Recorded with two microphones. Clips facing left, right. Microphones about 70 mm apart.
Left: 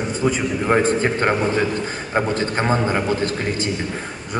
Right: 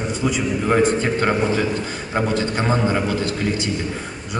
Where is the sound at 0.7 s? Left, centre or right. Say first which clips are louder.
Even; left.